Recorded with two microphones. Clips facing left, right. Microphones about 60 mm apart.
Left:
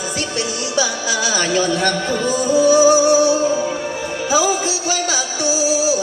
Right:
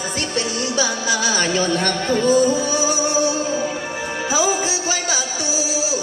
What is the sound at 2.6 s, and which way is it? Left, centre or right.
Music, left.